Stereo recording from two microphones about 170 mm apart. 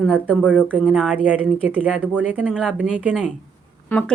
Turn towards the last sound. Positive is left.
turn(degrees=5)  # may be behind; listen again after turning